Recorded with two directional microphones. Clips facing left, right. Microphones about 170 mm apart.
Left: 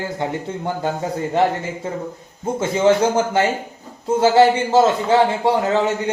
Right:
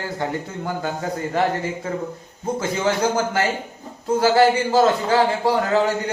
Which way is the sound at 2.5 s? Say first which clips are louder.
Left 7 dB; 25° left (ahead or behind).